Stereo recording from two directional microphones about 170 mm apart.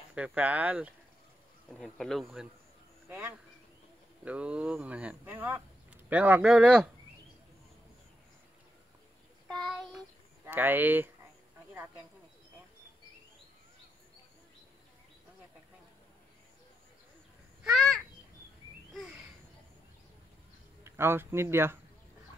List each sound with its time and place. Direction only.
0.1 s speech: 10° right (ahead or behind)
3.1 s speech: 10° right (ahead or behind)
9.5 s child singing: centre (ahead or behind)
10.4 s speech: 10° right (ahead or behind)
17.6 s a sound: centre (ahead or behind)
20.8 s speech: 15° right (ahead or behind)